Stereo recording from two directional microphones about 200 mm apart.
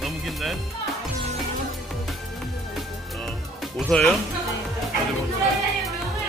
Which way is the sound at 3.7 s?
5° left (ahead or behind).